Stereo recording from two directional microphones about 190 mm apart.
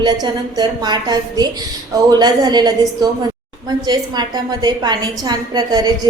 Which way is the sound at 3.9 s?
20° right (ahead or behind).